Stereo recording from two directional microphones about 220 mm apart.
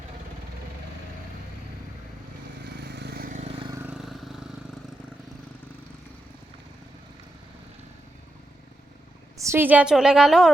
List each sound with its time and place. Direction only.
2.8 s vehicle: 50° right (ahead or behind); by 3.7 s 25° right (ahead or behind)
3.7 s vehicle: 10° right (ahead or behind)
9.4 s a woman's voice: 10° right (ahead or behind)